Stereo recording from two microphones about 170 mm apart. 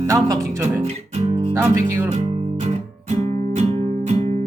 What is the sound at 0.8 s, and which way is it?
Music, 35° right (ahead or behind).